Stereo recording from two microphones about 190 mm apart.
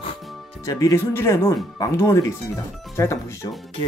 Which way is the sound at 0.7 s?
15° left (ahead or behind).